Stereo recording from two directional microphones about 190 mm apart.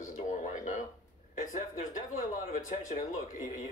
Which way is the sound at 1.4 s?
45° left (ahead or behind).